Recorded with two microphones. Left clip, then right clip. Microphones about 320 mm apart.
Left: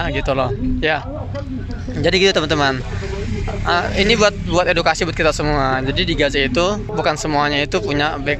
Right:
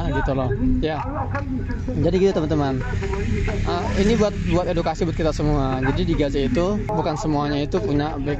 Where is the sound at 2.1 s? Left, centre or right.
Left.